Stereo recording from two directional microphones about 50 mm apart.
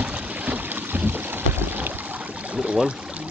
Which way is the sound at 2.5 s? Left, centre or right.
Right.